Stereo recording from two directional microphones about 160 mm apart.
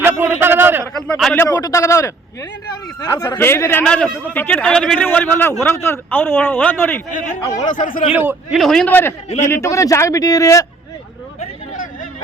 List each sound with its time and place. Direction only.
0.0 s a sound: 15° right (ahead or behind)
0.9 s a man's voice: 5° left (ahead or behind)
1.6 s a man's voice: 20° left (ahead or behind)
7.1 s speech: 55° left (ahead or behind)
8.2 s a man's voice: 10° right (ahead or behind)
8.5 s a man's voice: centre (ahead or behind); by 10.7 s 20° left (ahead or behind)